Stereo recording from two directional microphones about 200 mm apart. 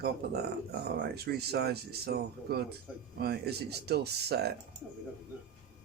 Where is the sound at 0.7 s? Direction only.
50° right (ahead or behind).